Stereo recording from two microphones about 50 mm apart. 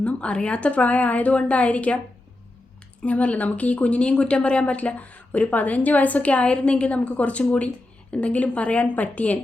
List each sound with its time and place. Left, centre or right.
0.0 s speech: left
3.0 s speech: left